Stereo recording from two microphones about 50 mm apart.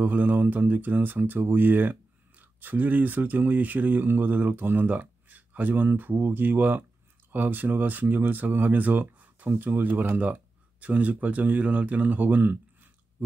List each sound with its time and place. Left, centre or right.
0.0 s speech: right